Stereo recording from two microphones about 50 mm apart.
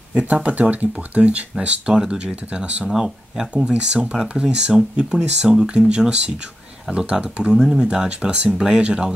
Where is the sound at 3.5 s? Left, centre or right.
Centre.